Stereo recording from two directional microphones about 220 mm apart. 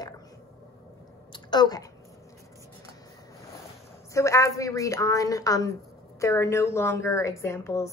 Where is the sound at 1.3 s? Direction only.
20° left (ahead or behind).